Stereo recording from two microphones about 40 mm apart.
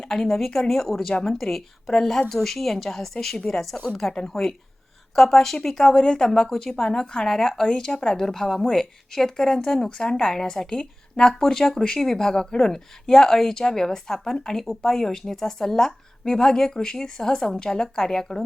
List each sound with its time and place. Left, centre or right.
0.0 s a woman's voice: centre
7.7 s a woman's voice: centre